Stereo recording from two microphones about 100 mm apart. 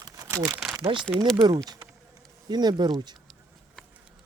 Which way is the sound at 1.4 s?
40° right (ahead or behind).